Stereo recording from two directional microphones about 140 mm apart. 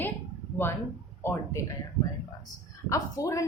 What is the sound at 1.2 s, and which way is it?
Speech, 20° left (ahead or behind).